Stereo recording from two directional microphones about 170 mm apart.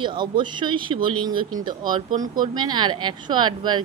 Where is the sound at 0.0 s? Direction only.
30° right (ahead or behind).